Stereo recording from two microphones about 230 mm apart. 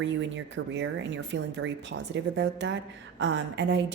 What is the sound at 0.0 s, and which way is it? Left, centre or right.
A woman's voice, right.